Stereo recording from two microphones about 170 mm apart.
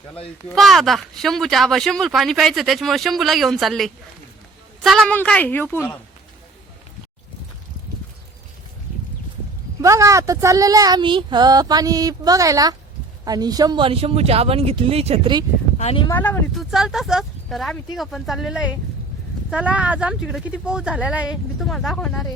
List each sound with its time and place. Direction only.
0.5 s a woman's voice: centre (ahead or behind)
9.8 s speech: 20° right (ahead or behind)
15.8 s speech: 35° left (ahead or behind)
16.1 s a woman's voice: 10° left (ahead or behind)
16.6 s speech: 5° right (ahead or behind)